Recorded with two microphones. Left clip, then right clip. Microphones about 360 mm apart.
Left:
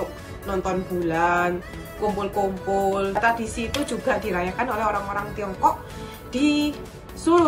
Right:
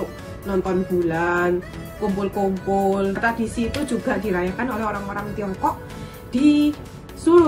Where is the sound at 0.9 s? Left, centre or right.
Centre.